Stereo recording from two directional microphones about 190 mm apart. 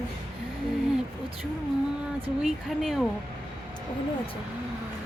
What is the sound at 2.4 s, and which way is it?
Speech, centre (ahead or behind).